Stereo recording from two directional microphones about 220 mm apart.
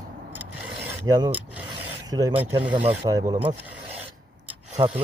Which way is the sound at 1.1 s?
15° right (ahead or behind).